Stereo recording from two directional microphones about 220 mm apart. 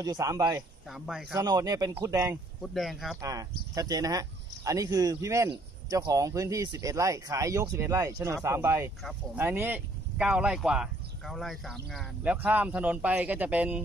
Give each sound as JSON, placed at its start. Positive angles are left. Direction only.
{"t": 0.0, "sound": "speech", "side_deg": -15}
{"t": 0.8, "sound": "speech", "side_deg": 0}
{"t": 1.4, "sound": "speech", "side_deg": -15}
{"t": 2.6, "sound": "speech", "side_deg": 0}
{"t": 3.2, "sound": "speech", "side_deg": -15}